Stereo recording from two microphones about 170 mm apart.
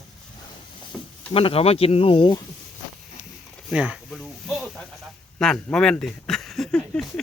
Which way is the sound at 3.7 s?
5° right (ahead or behind).